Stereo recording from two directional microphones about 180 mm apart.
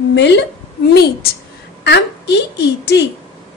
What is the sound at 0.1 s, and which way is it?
A woman's voice, 75° left (ahead or behind).